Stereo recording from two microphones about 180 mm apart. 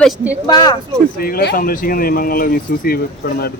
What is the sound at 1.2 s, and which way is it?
Speech, 60° left (ahead or behind).